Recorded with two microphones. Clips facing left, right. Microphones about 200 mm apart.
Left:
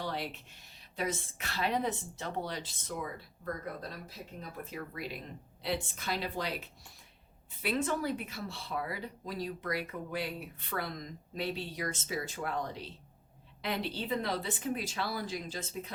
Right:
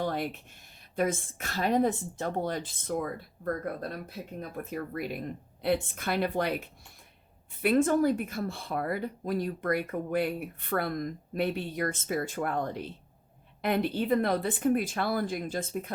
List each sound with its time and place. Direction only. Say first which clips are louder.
0.0 s a woman's voice: right 6 dB; 50° right (ahead or behind)
7.6 s speech: right 9 dB; 50° right (ahead or behind)